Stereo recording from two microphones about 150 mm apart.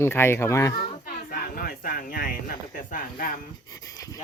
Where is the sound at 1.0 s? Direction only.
70° left (ahead or behind).